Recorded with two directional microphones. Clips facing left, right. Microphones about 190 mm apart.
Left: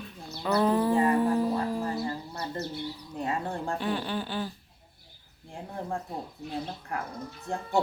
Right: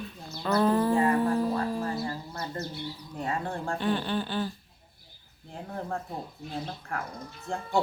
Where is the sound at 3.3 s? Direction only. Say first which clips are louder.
Even; 20° left (ahead or behind).